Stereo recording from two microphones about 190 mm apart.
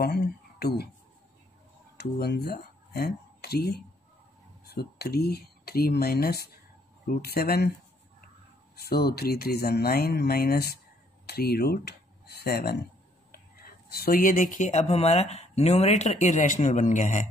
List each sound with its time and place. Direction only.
0.0 s speech: 55° left (ahead or behind)
2.0 s speech: 60° left (ahead or behind)
8.7 s speech: 55° left (ahead or behind)